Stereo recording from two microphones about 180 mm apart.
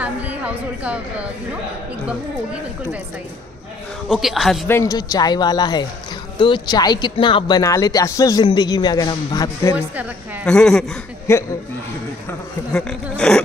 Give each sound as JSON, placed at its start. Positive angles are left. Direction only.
{"t": 0.0, "sound": "a sound", "side_deg": -10}
{"t": 4.1, "sound": "a woman's voice", "side_deg": 0}
{"t": 4.6, "sound": "speech", "side_deg": 15}
{"t": 10.4, "sound": "a woman's voice", "side_deg": 5}
{"t": 11.3, "sound": "speech", "side_deg": 15}
{"t": 13.2, "sound": "a woman's voice", "side_deg": 5}